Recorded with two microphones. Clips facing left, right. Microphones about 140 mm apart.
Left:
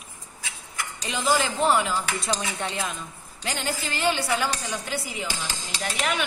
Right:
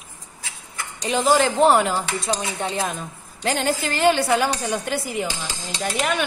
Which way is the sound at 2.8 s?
50° right (ahead or behind).